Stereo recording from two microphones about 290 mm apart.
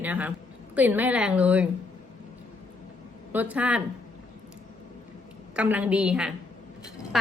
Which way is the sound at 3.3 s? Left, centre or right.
Centre.